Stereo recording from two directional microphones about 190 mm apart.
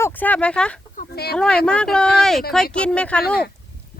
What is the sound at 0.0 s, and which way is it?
Speech, 10° left (ahead or behind).